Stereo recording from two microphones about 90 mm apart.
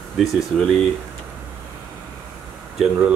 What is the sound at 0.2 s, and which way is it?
Speech, centre (ahead or behind).